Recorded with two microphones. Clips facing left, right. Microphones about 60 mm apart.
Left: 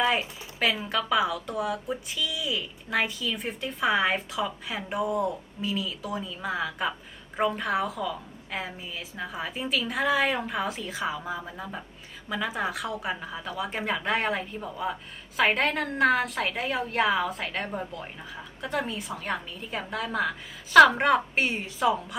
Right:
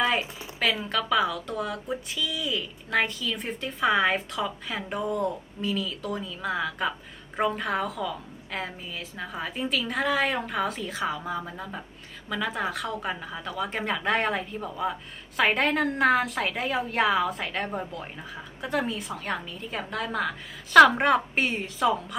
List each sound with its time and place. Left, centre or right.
0.0 s speech: centre